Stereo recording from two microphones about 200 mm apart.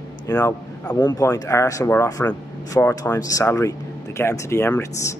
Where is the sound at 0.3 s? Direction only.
15° left (ahead or behind).